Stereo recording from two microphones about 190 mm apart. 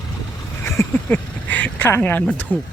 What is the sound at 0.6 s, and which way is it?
Speech, 10° left (ahead or behind).